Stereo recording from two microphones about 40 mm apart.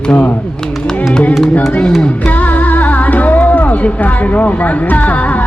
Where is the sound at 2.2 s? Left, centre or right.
Left.